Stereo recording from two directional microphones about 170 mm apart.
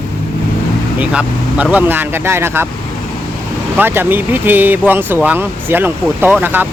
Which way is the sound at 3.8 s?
10° right (ahead or behind).